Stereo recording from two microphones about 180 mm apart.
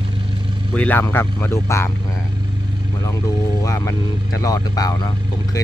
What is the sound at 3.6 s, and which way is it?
Speech, 20° left (ahead or behind).